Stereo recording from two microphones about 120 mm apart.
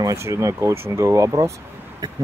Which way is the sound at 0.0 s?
25° right (ahead or behind).